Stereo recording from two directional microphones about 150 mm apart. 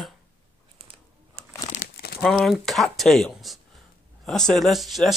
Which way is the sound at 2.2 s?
Centre (ahead or behind).